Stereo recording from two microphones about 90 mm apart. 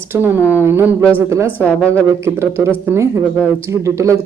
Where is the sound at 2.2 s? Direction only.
25° right (ahead or behind).